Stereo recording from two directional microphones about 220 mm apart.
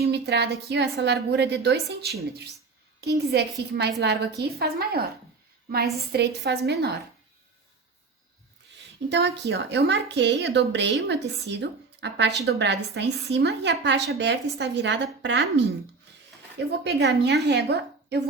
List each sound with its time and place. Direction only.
0.1 s a woman's voice: 50° right (ahead or behind)
9.0 s a woman's voice: 50° right (ahead or behind)
16.8 s a woman's voice: 50° right (ahead or behind)